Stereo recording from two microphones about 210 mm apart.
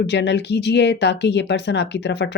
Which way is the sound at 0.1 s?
55° left (ahead or behind).